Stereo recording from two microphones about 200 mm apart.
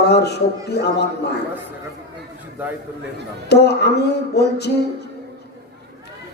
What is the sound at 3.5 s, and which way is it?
Speech, 55° left (ahead or behind).